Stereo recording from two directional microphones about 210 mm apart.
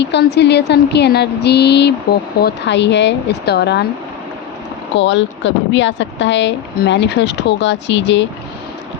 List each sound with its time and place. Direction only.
0.0 s speech: 55° left (ahead or behind)
4.9 s speech: 60° left (ahead or behind)